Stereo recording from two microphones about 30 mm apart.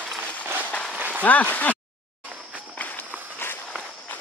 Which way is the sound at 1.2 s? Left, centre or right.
Left.